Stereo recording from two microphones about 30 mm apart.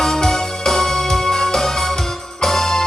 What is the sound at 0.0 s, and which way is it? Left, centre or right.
Music, centre.